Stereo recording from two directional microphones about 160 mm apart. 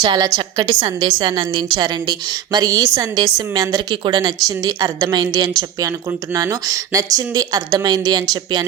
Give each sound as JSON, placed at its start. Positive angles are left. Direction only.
{"t": 0.0, "sound": "a woman's voice", "side_deg": -25}